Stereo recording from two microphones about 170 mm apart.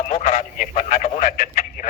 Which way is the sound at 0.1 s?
45° left (ahead or behind).